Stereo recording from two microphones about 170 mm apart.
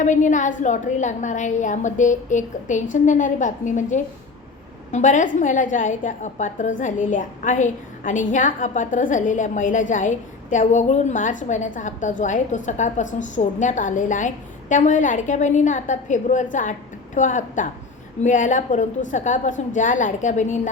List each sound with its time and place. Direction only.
0.0 s a woman's voice: 45° left (ahead or behind)